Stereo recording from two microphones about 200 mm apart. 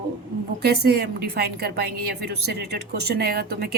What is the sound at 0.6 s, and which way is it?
A woman's voice, 55° right (ahead or behind).